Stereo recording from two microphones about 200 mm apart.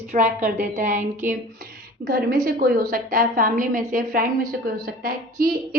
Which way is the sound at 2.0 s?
50° right (ahead or behind).